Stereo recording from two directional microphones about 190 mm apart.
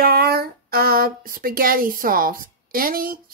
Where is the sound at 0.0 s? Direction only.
55° right (ahead or behind).